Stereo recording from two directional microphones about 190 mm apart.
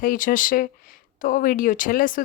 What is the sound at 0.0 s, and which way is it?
Speech, 45° left (ahead or behind).